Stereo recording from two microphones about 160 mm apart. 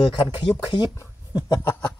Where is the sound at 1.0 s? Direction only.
25° left (ahead or behind).